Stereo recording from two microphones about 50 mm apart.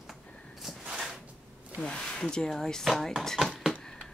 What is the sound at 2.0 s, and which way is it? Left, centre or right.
Speech, centre.